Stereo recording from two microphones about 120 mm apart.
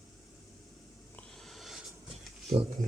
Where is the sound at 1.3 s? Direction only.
Centre (ahead or behind).